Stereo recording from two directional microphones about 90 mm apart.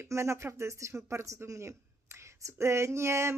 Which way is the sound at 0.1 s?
30° right (ahead or behind).